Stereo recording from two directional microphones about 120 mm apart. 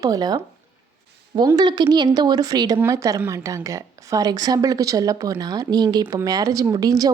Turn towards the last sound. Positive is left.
turn(degrees=-30)  # may be behind; listen again after turning